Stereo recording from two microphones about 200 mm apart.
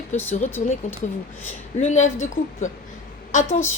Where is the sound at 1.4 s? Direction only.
35° left (ahead or behind).